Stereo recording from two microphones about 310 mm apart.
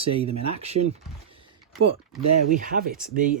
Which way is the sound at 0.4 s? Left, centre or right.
Centre.